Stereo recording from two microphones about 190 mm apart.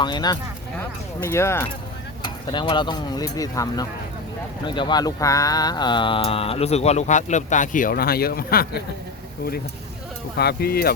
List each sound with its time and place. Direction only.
0.0 s speech: 20° left (ahead or behind)
2.2 s speech: 25° left (ahead or behind); by 8.6 s 50° left (ahead or behind)
10.3 s speech: 55° left (ahead or behind)